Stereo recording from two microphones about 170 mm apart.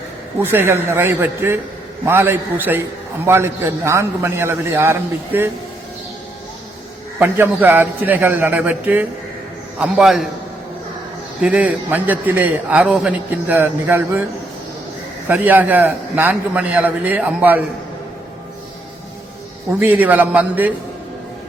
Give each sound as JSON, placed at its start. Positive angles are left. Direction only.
{"t": 0.4, "sound": "a man's voice", "side_deg": -15}
{"t": 7.2, "sound": "a man's voice", "side_deg": -10}
{"t": 11.3, "sound": "a man's voice", "side_deg": -5}
{"t": 15.3, "sound": "a man's voice", "side_deg": -10}
{"t": 19.8, "sound": "a man's voice", "side_deg": -10}